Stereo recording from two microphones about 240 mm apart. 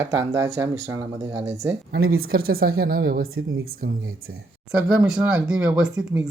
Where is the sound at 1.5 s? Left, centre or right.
Right.